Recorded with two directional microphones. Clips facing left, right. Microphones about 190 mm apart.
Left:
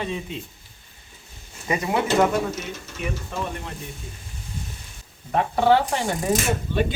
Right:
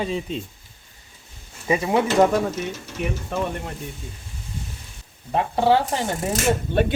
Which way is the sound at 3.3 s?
60° right (ahead or behind).